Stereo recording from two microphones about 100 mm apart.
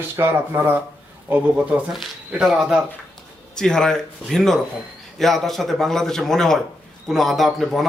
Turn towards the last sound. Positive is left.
turn(degrees=0)  # may be behind; listen again after turning